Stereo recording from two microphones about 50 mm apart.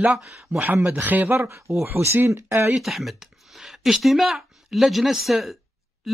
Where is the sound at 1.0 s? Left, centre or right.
Right.